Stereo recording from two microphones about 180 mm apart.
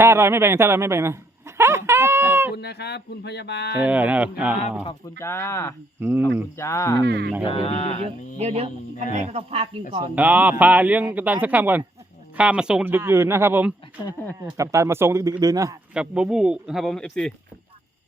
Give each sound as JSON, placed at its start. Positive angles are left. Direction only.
{"t": 0.0, "sound": "speech", "side_deg": -15}
{"t": 2.6, "sound": "speech", "side_deg": 65}
{"t": 3.8, "sound": "speech", "side_deg": -10}
{"t": 5.1, "sound": "speech", "side_deg": 15}
{"t": 6.0, "sound": "speech", "side_deg": -10}
{"t": 6.6, "sound": "speech", "side_deg": 15}
{"t": 7.0, "sound": "speech", "side_deg": -70}
{"t": 7.4, "sound": "speech", "side_deg": 30}
{"t": 8.0, "sound": "speech", "side_deg": -35}
{"t": 10.2, "sound": "speech", "side_deg": -10}
{"t": 16.0, "sound": "speech", "side_deg": -5}